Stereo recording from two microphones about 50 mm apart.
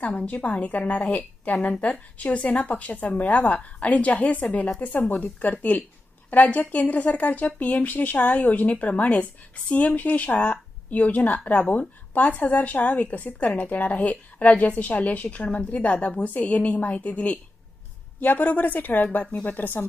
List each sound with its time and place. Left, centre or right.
0.0 s a woman's voice: left
18.2 s a woman's voice: left